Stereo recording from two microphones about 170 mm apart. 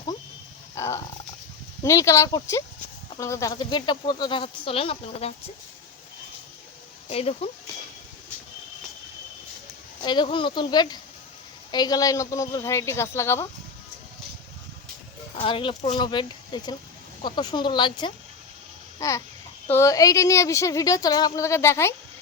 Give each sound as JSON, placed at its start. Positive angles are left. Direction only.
{"t": 0.8, "sound": "a woman's voice", "side_deg": 15}
{"t": 7.1, "sound": "speech", "side_deg": 35}
{"t": 10.0, "sound": "speech", "side_deg": 25}
{"t": 15.4, "sound": "a child's voice", "side_deg": 30}